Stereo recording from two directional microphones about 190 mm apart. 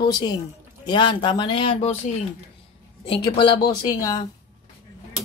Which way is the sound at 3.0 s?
25° left (ahead or behind).